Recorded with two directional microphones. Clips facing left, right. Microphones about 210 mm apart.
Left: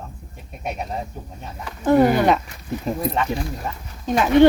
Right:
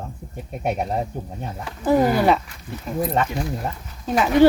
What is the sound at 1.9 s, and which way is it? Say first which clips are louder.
Speech: left 2 dB; 5° right (ahead or behind).